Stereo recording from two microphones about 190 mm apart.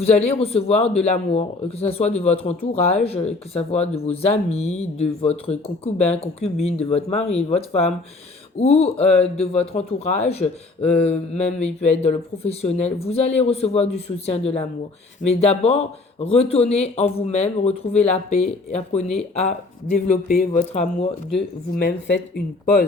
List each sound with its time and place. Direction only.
0.0 s a man's voice: 35° left (ahead or behind)
21.8 s speech: 60° left (ahead or behind)